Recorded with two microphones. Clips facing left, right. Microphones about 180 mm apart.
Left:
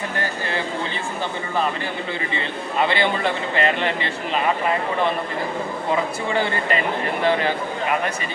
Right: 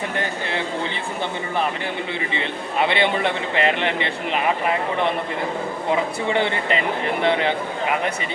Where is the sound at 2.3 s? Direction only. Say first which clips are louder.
Even; 20° right (ahead or behind).